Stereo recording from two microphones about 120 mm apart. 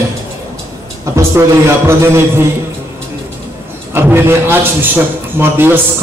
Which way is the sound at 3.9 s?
20° right (ahead or behind).